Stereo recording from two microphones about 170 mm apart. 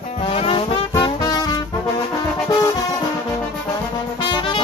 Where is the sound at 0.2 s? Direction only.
35° left (ahead or behind).